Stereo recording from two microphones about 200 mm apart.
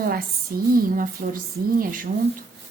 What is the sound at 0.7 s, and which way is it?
A woman's voice, 45° right (ahead or behind).